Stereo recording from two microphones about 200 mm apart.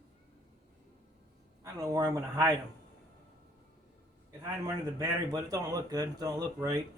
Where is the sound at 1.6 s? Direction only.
15° right (ahead or behind).